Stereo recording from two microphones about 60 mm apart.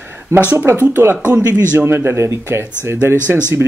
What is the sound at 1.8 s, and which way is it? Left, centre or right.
Speech, right.